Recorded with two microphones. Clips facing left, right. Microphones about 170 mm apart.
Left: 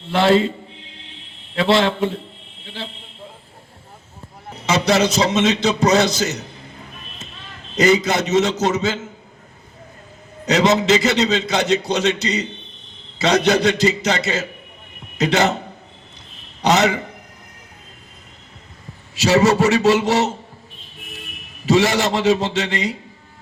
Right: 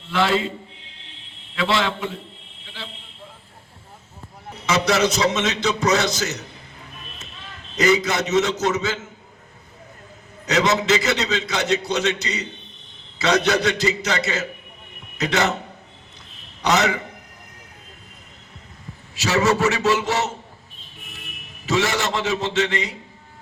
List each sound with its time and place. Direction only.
0.1 s a man's voice: 30° left (ahead or behind)
1.5 s a man's voice: 30° left (ahead or behind)
4.9 s a man's voice: 30° left (ahead or behind)
7.8 s a man's voice: 30° left (ahead or behind)
10.4 s a man's voice: 30° left (ahead or behind)
16.6 s a man's voice: 30° left (ahead or behind)
19.2 s a man's voice: 30° left (ahead or behind)
21.7 s a man's voice: 30° left (ahead or behind)